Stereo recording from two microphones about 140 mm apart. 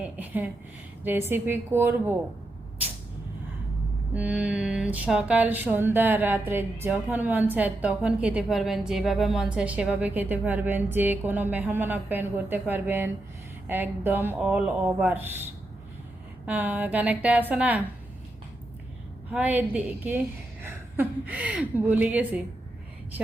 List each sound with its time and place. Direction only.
0.0 s speech: 10° right (ahead or behind)
1.0 s music: 15° right (ahead or behind)
4.1 s music: 10° right (ahead or behind)
16.5 s music: 10° right (ahead or behind)
19.3 s music: 10° right (ahead or behind)